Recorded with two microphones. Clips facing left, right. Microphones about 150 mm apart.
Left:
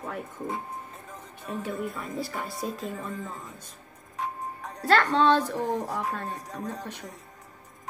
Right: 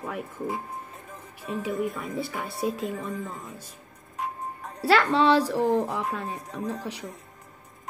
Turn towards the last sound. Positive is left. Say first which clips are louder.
# right 3 dB
turn(degrees=-10)  # may be behind; listen again after turning